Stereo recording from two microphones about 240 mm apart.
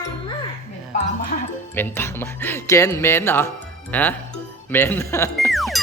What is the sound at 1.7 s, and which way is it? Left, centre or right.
Speech, centre.